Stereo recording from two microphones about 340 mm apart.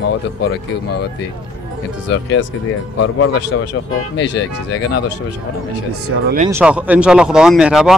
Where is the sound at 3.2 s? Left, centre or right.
Left.